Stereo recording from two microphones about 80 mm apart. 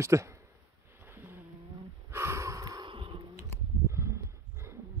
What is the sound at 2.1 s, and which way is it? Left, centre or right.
Sniff, right.